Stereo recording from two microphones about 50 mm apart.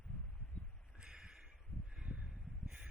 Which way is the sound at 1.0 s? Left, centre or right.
Centre.